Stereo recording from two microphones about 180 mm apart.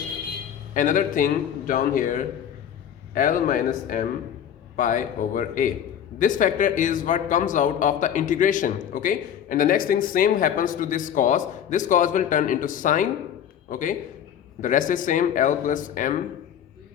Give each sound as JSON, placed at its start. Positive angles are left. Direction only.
{"t": 0.7, "sound": "speech", "side_deg": 45}